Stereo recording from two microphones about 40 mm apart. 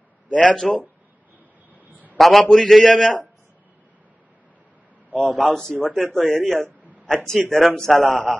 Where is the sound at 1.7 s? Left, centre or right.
Right.